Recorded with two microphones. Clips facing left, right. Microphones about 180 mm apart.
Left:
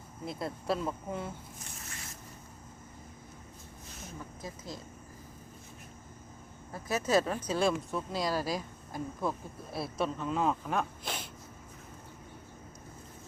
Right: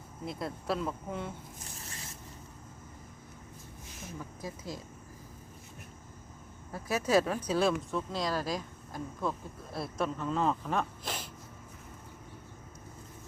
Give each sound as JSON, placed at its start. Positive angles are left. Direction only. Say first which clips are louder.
{"t": 0.3, "sound": "speech", "louder": "left 1 dB", "side_deg": 0}
{"t": 1.8, "sound": "zipper", "louder": "right 1 dB", "side_deg": -30}
{"t": 4.4, "sound": "speech", "louder": "right 2 dB", "side_deg": -10}
{"t": 6.7, "sound": "speech", "louder": "right 1 dB", "side_deg": -10}